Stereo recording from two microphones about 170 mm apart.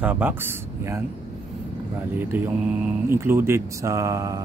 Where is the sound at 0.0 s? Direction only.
10° right (ahead or behind).